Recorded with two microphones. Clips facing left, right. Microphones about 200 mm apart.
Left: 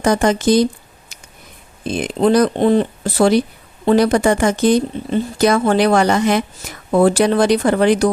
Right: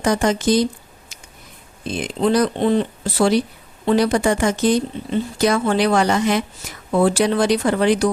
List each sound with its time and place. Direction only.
0.0 s speech: 55° left (ahead or behind)
1.8 s speech: 55° left (ahead or behind)